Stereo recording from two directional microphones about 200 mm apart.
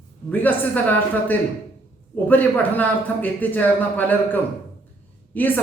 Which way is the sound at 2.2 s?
10° left (ahead or behind).